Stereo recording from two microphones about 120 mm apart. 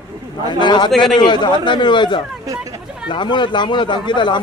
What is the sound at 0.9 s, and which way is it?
Speech, centre (ahead or behind).